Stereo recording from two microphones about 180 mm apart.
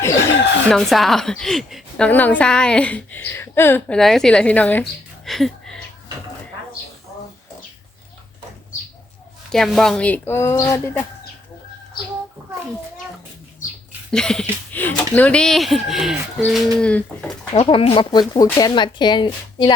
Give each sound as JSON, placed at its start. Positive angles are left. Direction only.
{"t": 0.0, "sound": "chicken", "side_deg": 15}
{"t": 0.7, "sound": "a woman's voice", "side_deg": 0}
{"t": 9.5, "sound": "speech", "side_deg": 0}
{"t": 14.1, "sound": "a woman's voice", "side_deg": 5}
{"t": 17.5, "sound": "speech", "side_deg": 30}